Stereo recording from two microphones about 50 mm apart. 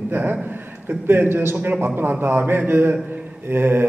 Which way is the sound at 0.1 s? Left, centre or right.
Right.